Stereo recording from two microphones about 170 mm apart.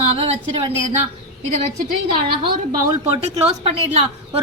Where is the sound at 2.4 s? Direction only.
25° right (ahead or behind).